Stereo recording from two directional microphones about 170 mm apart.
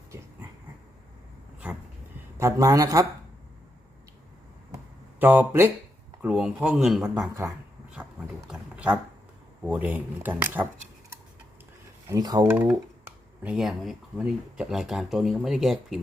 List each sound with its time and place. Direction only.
2.4 s a man's voice: 20° right (ahead or behind)
5.2 s speech: 10° right (ahead or behind)
12.0 s a man's voice: 20° right (ahead or behind)
13.1 s speech: 5° right (ahead or behind)